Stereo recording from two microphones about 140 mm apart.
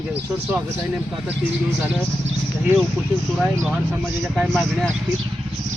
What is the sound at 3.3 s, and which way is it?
Speech, centre (ahead or behind).